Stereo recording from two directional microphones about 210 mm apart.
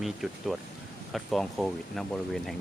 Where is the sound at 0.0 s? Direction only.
Centre (ahead or behind).